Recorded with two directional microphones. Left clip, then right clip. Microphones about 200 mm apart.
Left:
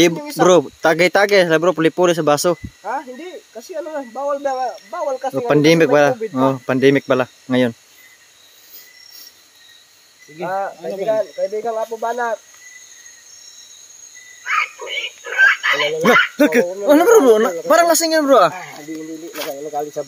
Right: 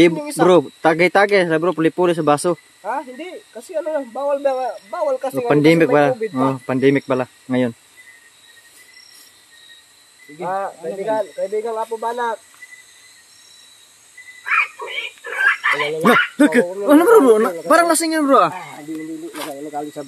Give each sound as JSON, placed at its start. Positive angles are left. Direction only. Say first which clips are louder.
{"t": 0.1, "sound": "speech", "louder": "right 1 dB", "side_deg": -15}
{"t": 0.4, "sound": "speech", "louder": "left 1 dB", "side_deg": 10}
{"t": 2.8, "sound": "speech", "louder": "even", "side_deg": -25}
{"t": 5.5, "sound": "speech", "louder": "left 1 dB", "side_deg": 15}
{"t": 10.4, "sound": "speech", "louder": "left 1 dB", "side_deg": -20}
{"t": 14.4, "sound": "a sound", "louder": "right 1 dB", "side_deg": 40}
{"t": 16.3, "sound": "speech", "louder": "left 1 dB", "side_deg": 5}
{"t": 18.5, "sound": "speech", "louder": "even", "side_deg": -5}
{"t": 19.3, "sound": "speech", "louder": "left 5 dB", "side_deg": 10}